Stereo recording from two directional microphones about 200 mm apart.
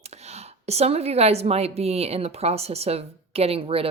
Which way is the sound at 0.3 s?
30° right (ahead or behind).